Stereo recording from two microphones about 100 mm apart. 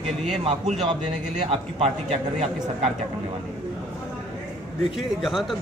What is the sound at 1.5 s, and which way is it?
A man's voice, 90° right.